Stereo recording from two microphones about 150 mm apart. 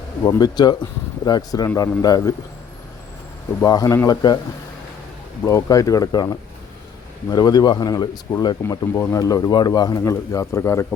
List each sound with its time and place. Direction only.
0.3 s speech: 25° left (ahead or behind)
3.6 s speech: 20° left (ahead or behind)
5.5 s speech: 20° left (ahead or behind)